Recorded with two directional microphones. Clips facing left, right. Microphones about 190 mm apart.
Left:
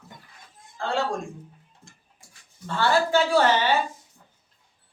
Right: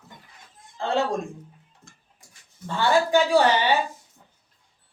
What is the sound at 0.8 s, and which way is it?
Speech, 20° right (ahead or behind).